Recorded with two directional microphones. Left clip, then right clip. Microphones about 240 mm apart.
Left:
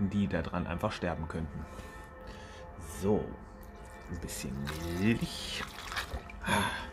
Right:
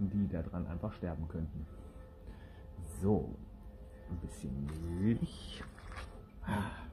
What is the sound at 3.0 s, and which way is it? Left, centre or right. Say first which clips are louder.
Speech: left 4 dB; centre.